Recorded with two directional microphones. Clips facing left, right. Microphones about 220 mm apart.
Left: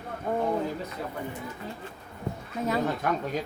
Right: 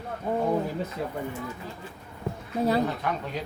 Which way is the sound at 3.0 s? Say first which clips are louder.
Left 2 dB; 45° left (ahead or behind).